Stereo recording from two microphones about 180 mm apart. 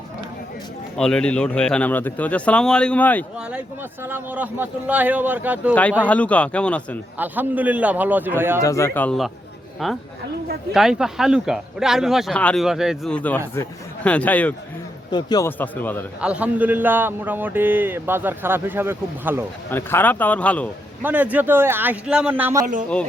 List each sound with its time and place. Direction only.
0.9 s speech: 5° left (ahead or behind)
4.0 s speech: 10° right (ahead or behind)
6.0 s speech: 10° left (ahead or behind)
7.2 s speech: 10° right (ahead or behind)
8.6 s speech: 15° left (ahead or behind)
15.1 s a man's voice: 20° left (ahead or behind)
15.4 s speech: 10° left (ahead or behind)
16.2 s speech: 5° right (ahead or behind)
19.7 s speech: 10° left (ahead or behind)
21.0 s speech: 10° right (ahead or behind)
22.6 s speech: 45° right (ahead or behind)